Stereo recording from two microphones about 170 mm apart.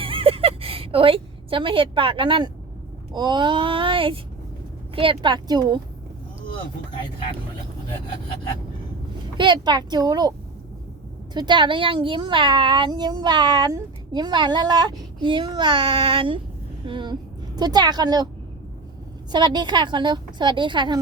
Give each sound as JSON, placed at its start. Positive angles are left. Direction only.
{"t": 0.0, "sound": "a sound", "side_deg": -30}
{"t": 3.1, "sound": "speech", "side_deg": -25}
{"t": 9.4, "sound": "speech", "side_deg": -25}
{"t": 11.3, "sound": "a woman's voice", "side_deg": -25}
{"t": 19.3, "sound": "speech", "side_deg": -25}